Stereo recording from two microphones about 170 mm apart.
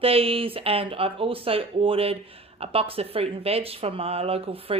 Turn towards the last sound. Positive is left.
turn(degrees=-35)  # may be behind; listen again after turning